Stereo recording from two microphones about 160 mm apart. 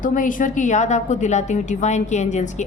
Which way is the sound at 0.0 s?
55° left (ahead or behind).